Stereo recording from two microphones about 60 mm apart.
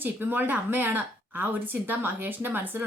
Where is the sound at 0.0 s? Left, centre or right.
Right.